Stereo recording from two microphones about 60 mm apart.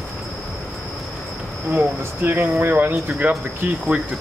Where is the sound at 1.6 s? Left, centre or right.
Right.